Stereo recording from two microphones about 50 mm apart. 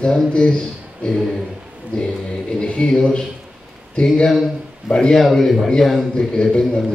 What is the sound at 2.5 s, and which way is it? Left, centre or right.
Speech, centre.